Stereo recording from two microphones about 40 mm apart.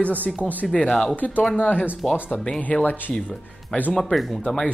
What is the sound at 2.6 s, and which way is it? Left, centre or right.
Speech, left.